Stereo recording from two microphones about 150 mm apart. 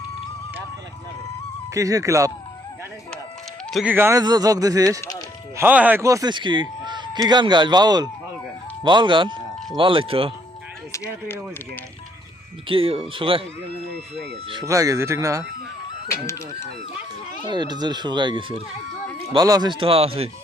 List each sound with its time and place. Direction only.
1.7 s a man's voice: 20° right (ahead or behind)
3.8 s speech: 15° right (ahead or behind)
4.2 s a man's voice: 25° right (ahead or behind)
5.5 s a man's voice: 10° right (ahead or behind); by 10.3 s 40° right (ahead or behind)
12.6 s speech: 35° right (ahead or behind)
14.6 s a man's voice: 20° right (ahead or behind)
17.4 s a man's voice: 30° right (ahead or behind)